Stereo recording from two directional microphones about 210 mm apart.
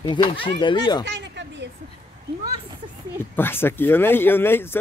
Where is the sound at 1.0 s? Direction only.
55° right (ahead or behind).